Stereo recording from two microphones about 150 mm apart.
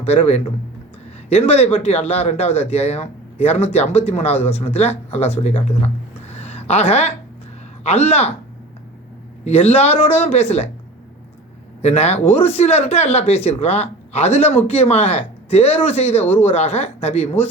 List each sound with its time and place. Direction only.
0.0 s speech: 45° left (ahead or behind)
6.3 s a sound: 45° left (ahead or behind)
7.9 s speech: 45° left (ahead or behind)
9.4 s speech: 45° left (ahead or behind)
11.8 s speech: 45° left (ahead or behind)